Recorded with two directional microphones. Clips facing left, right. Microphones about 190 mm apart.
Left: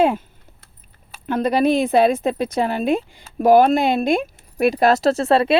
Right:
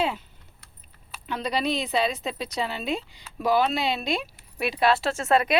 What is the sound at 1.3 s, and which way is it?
A woman's voice, 50° left (ahead or behind).